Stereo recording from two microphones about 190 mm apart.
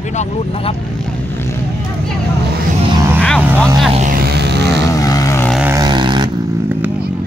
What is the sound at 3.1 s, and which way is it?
Vehicle, 5° left (ahead or behind).